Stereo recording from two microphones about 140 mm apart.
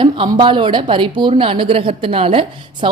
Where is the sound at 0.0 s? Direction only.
35° right (ahead or behind).